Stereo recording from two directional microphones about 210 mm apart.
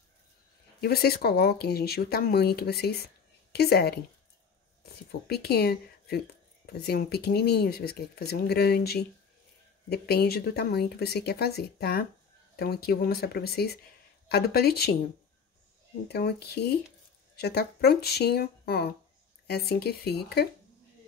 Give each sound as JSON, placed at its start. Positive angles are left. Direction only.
{"t": 0.7, "sound": "speech", "side_deg": 50}
{"t": 16.1, "sound": "speech", "side_deg": 50}